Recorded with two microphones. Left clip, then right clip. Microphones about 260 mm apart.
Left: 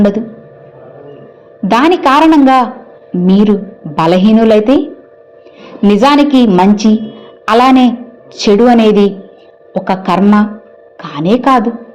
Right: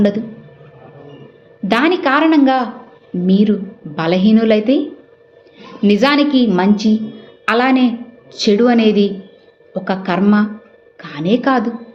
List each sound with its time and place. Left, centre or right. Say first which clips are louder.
1.6 s a woman's voice: left 6 dB; left
5.9 s a woman's voice: left 5 dB; centre